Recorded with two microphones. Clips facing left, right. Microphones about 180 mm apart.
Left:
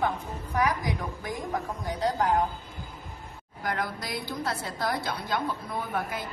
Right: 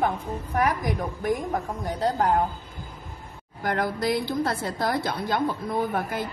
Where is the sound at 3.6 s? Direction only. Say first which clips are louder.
Right 6 dB; 50° right (ahead or behind).